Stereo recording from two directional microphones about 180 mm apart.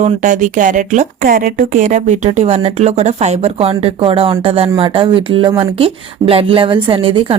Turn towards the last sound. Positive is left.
turn(degrees=-30)  # may be behind; listen again after turning